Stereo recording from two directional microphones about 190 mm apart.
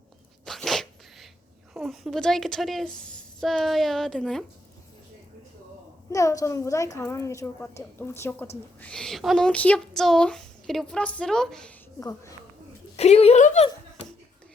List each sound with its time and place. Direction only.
0.4 s sneeze: centre (ahead or behind)
1.7 s speech: centre (ahead or behind)
6.1 s a woman's voice: 15° left (ahead or behind)
11.9 s a woman's voice: 15° left (ahead or behind)
13.0 s speech: 35° left (ahead or behind)